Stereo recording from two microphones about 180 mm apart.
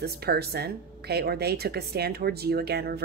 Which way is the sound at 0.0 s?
60° right (ahead or behind).